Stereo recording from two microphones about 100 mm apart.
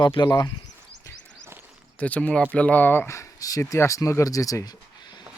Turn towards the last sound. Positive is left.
turn(degrees=45)  # may be behind; listen again after turning